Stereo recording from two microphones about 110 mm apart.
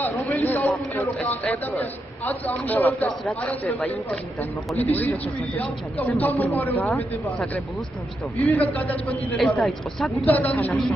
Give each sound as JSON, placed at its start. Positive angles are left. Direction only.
{"t": 0.0, "sound": "speech", "side_deg": 15}
{"t": 3.1, "sound": "speech", "side_deg": 0}
{"t": 3.4, "sound": "speech", "side_deg": 10}
{"t": 4.9, "sound": "speech", "side_deg": 15}
{"t": 8.4, "sound": "speech", "side_deg": 15}
{"t": 9.0, "sound": "speech", "side_deg": 0}
{"t": 10.2, "sound": "speech", "side_deg": 15}